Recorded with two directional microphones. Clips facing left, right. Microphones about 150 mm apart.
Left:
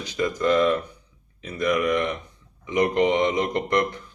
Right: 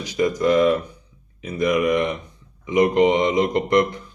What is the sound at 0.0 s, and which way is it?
Speech, 15° right (ahead or behind).